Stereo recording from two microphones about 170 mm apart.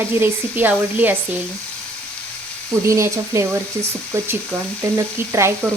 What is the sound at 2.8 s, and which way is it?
Speech, 15° right (ahead or behind).